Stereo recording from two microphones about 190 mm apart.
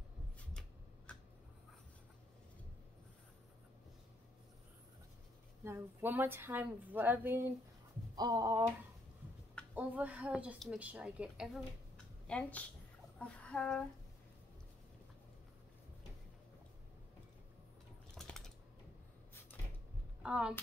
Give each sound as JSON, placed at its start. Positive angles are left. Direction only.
{"t": 5.6, "sound": "speech", "side_deg": -15}
{"t": 9.8, "sound": "a woman's voice", "side_deg": -5}
{"t": 18.1, "sound": "typing", "side_deg": 0}
{"t": 20.2, "sound": "a woman's voice", "side_deg": -5}